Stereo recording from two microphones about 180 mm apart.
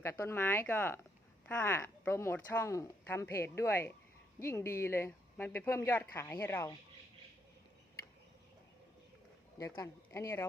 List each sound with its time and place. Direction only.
0.0 s speech: 15° left (ahead or behind)
9.6 s speech: 20° left (ahead or behind)